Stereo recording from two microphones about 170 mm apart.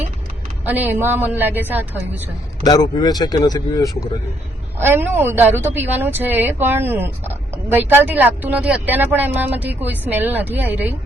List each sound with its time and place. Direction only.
0.6 s a woman's voice: 10° right (ahead or behind)
2.6 s speech: 20° left (ahead or behind)
4.8 s a woman's voice: 15° right (ahead or behind)